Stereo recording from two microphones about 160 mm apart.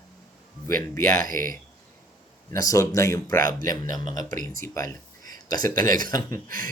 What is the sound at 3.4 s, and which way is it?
Speech, 60° right (ahead or behind).